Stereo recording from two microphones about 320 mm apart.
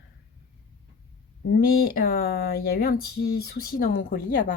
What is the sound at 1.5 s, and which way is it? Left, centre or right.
Speech, left.